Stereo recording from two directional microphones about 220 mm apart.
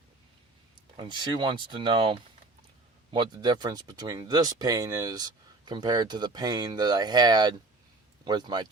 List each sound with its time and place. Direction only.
0.9 s speech: 20° right (ahead or behind)